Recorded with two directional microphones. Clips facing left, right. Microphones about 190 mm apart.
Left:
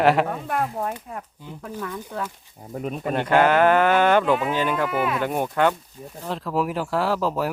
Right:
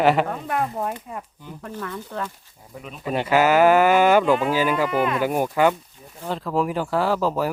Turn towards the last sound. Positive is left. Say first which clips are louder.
# right 1 dB
turn(degrees=0)  # may be behind; listen again after turning